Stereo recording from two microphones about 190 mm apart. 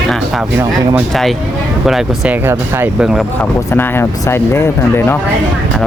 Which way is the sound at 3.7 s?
10° left (ahead or behind).